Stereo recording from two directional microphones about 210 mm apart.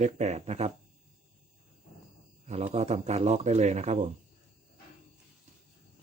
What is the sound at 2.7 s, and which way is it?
Speech, 30° right (ahead or behind).